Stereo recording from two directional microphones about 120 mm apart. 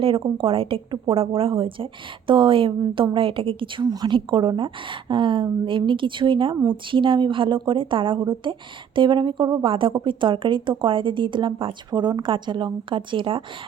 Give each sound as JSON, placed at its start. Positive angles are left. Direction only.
{"t": 0.0, "sound": "speech", "side_deg": -45}